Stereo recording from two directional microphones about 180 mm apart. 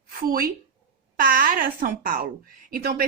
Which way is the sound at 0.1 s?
55° right (ahead or behind).